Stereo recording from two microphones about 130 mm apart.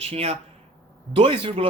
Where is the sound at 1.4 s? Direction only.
40° right (ahead or behind).